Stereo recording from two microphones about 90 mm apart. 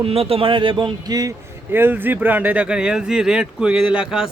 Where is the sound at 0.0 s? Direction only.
90° right; by 0.9 s 70° right (ahead or behind).